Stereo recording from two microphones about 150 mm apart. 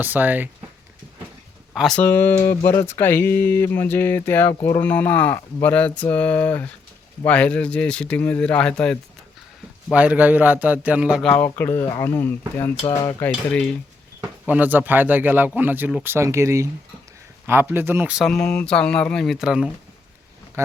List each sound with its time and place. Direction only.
0.0 s speech: 10° right (ahead or behind)
1.7 s speech: centre (ahead or behind)
2.0 s speech: 15° left (ahead or behind)
9.9 s speech: 10° right (ahead or behind)
11.3 s speech: 15° left (ahead or behind)
13.0 s cutlery: 20° left (ahead or behind)
13.5 s speech: 5° left (ahead or behind)
14.2 s speech: 10° right (ahead or behind)
18.3 s speech: 5° left (ahead or behind)